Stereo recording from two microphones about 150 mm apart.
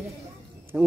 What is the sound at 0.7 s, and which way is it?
Speech, 10° right (ahead or behind).